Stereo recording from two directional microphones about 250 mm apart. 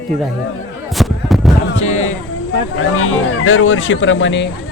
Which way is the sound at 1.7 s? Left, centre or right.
Left.